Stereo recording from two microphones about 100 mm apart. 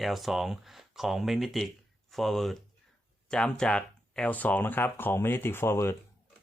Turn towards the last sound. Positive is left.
turn(degrees=25)  # may be behind; listen again after turning